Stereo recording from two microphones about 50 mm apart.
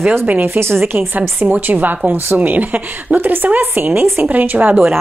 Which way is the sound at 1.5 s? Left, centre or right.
Right.